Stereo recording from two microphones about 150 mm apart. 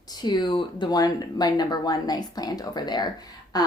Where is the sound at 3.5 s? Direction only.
25° left (ahead or behind).